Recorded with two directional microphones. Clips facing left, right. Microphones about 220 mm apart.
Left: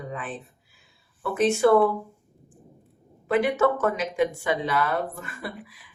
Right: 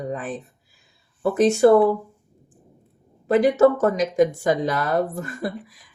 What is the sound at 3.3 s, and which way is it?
Speech, 40° right (ahead or behind).